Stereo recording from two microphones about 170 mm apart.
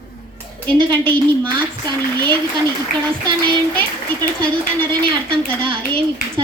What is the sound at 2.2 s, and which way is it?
Speech, 25° right (ahead or behind).